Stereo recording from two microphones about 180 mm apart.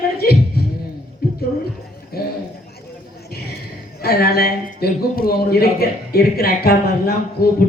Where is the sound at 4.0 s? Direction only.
60° left (ahead or behind).